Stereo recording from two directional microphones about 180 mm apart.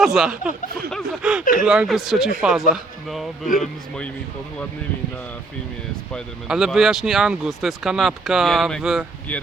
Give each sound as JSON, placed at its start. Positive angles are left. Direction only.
{"t": 0.0, "sound": "speech", "side_deg": 0}
{"t": 3.4, "sound": "speech", "side_deg": 50}
{"t": 6.1, "sound": "speech", "side_deg": 0}